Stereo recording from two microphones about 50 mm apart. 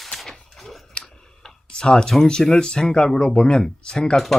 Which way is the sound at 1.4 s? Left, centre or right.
Centre.